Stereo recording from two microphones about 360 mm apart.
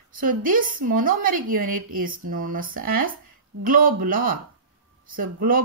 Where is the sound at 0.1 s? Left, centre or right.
Right.